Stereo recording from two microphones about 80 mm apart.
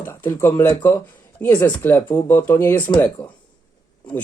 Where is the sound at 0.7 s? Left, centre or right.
Left.